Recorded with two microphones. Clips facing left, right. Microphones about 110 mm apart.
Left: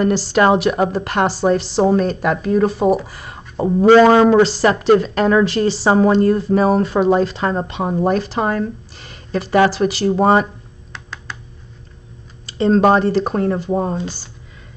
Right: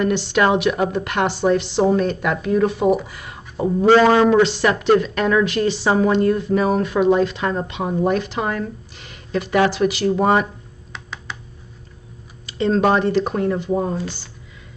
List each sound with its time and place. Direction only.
0.0 s speech: 35° left (ahead or behind)
10.9 s computer keyboard: centre (ahead or behind)
12.4 s speech: 35° left (ahead or behind)